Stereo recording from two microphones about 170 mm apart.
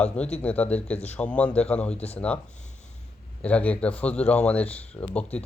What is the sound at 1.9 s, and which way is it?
Speech, 35° left (ahead or behind).